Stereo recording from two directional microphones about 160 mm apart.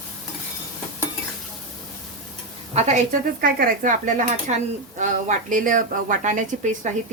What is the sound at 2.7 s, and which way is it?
Dishes, 45° right (ahead or behind).